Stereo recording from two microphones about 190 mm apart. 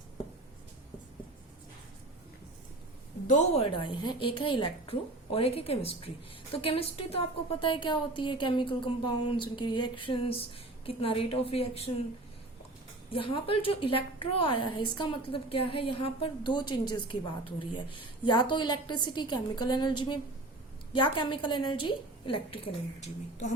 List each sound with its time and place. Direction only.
3.2 s a woman's voice: 35° left (ahead or behind)
13.1 s a woman's voice: 25° left (ahead or behind)